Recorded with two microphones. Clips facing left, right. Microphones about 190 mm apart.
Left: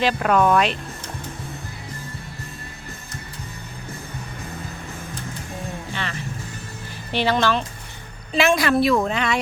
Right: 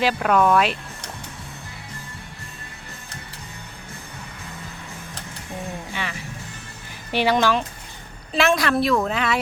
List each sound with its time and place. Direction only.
0.0 s a woman's voice: 5° right (ahead or behind)
5.9 s music: 10° right (ahead or behind)
7.1 s speech: 10° right (ahead or behind)
8.3 s a woman's voice: centre (ahead or behind)